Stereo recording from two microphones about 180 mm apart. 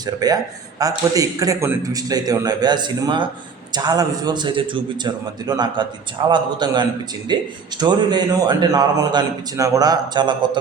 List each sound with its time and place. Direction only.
0.0 s a man's voice: 20° right (ahead or behind)